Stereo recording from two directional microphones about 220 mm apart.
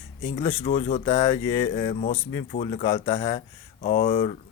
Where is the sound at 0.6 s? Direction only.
25° left (ahead or behind).